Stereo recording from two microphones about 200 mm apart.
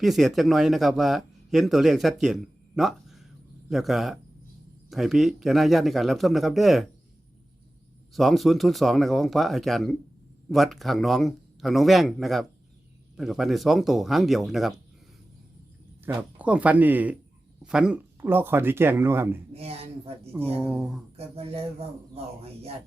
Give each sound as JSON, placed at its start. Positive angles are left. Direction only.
{"t": 0.0, "sound": "a man's voice", "side_deg": 0}
{"t": 8.1, "sound": "a man's voice", "side_deg": 0}
{"t": 16.0, "sound": "speech", "side_deg": -5}
{"t": 19.5, "sound": "speech", "side_deg": -30}
{"t": 20.6, "sound": "a man's voice", "side_deg": 0}
{"t": 21.2, "sound": "speech", "side_deg": -30}